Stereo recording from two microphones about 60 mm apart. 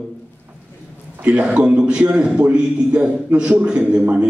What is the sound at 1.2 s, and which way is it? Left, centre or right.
A man's voice, right.